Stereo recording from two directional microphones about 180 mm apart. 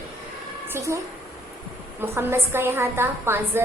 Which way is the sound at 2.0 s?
15° right (ahead or behind).